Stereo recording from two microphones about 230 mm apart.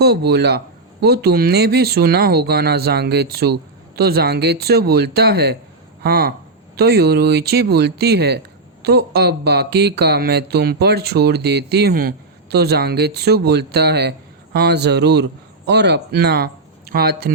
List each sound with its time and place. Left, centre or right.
0.3 s speech: right